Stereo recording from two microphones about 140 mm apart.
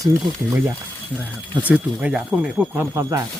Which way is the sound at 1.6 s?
10° right (ahead or behind).